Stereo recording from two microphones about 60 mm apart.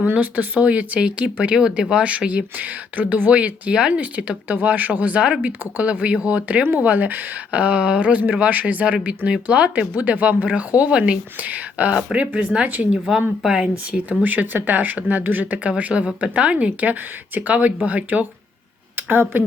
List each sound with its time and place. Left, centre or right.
0.0 s speech: right
12.9 s speech: centre
14.3 s speech: right
15.5 s speech: right